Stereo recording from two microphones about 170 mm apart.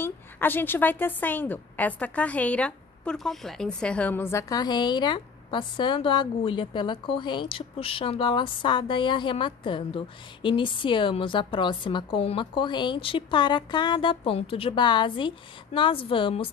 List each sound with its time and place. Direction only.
0.0 s a woman's voice: 10° left (ahead or behind); by 16.4 s 30° left (ahead or behind)